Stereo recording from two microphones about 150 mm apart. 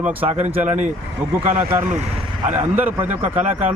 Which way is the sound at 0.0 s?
10° right (ahead or behind).